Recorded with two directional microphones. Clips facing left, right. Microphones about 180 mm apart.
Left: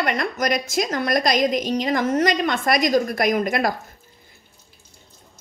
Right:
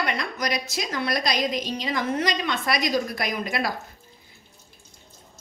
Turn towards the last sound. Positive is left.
turn(degrees=50)  # may be behind; listen again after turning